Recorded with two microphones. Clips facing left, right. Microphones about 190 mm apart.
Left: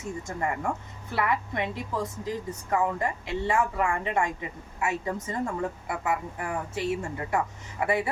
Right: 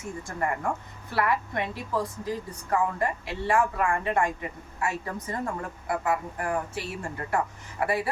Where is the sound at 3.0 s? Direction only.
20° left (ahead or behind).